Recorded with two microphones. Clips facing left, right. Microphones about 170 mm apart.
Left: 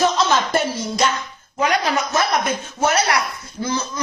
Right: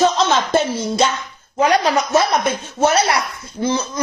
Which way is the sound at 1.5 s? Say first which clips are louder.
Right 4 dB; 30° right (ahead or behind).